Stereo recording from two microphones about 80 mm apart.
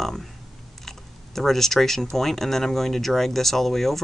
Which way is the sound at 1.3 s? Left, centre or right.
Centre.